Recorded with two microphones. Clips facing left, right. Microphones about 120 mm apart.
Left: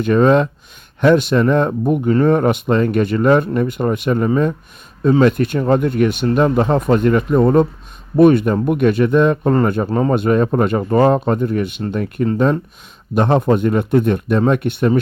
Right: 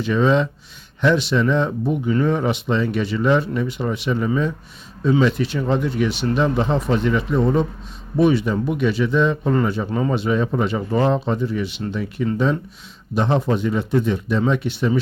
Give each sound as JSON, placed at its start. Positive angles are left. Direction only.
{"t": 0.0, "sound": "speech", "side_deg": 55}